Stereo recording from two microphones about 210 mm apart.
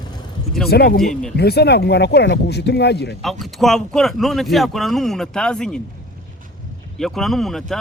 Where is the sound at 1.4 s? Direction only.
50° left (ahead or behind).